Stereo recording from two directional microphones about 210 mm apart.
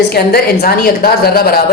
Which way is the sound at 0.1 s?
50° left (ahead or behind).